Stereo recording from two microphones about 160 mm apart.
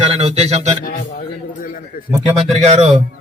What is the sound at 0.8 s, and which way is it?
A man's voice, 65° left (ahead or behind).